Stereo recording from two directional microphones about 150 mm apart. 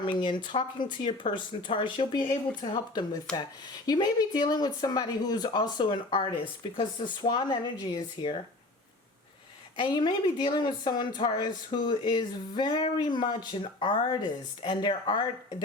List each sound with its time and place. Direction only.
0.0 s speech: 30° left (ahead or behind)
9.8 s speech: 30° left (ahead or behind)